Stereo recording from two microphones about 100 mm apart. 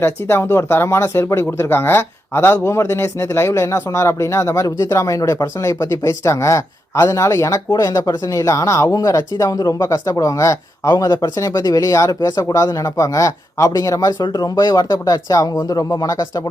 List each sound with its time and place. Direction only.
0.0 s speech: 25° left (ahead or behind)